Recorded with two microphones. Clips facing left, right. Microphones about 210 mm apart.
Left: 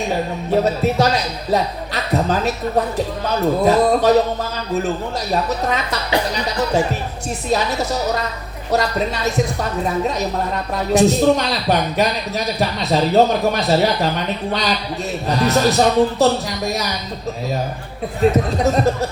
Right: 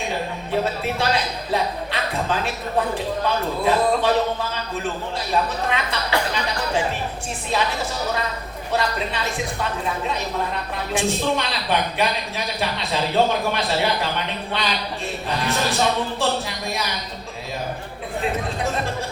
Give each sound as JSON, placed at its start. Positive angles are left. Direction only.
{"t": 0.5, "sound": "speech", "side_deg": 40}
{"t": 5.3, "sound": "speech", "side_deg": 40}
{"t": 7.5, "sound": "speech", "side_deg": 40}
{"t": 10.9, "sound": "speech", "side_deg": 40}
{"t": 18.2, "sound": "speech", "side_deg": 40}